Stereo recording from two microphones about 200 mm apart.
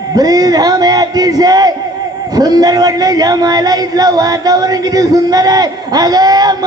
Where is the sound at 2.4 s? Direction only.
20° right (ahead or behind).